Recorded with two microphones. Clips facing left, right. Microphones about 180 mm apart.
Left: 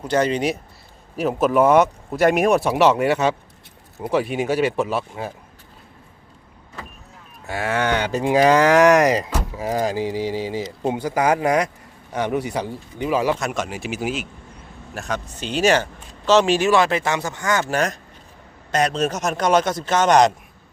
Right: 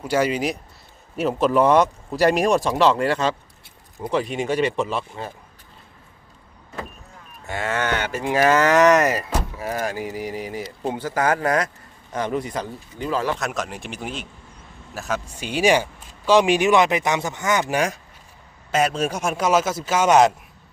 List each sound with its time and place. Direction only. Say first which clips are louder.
0.0 s speech: left 1 dB; 10° right (ahead or behind)
2.6 s speech: left 2 dB; 15° left (ahead or behind)
7.4 s speech: left 3 dB; 10° left (ahead or behind)
10.2 s mantra: left 5 dB; 90° left
10.6 s speech: left 3 dB; 15° left (ahead or behind)
13.4 s speech: left 2 dB; centre (ahead or behind)